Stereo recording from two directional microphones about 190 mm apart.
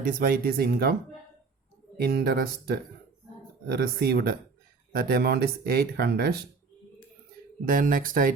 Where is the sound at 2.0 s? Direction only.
55° right (ahead or behind).